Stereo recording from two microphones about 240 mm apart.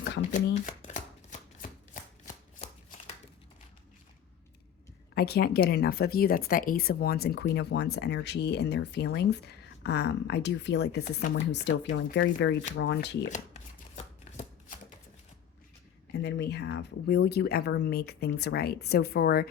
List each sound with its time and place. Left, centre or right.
0.0 s shuffling cards: left
5.1 s speech: left
13.3 s chopping: left
16.1 s speech: left